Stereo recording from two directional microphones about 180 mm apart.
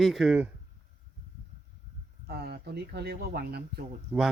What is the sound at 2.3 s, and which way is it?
Speech, 65° right (ahead or behind).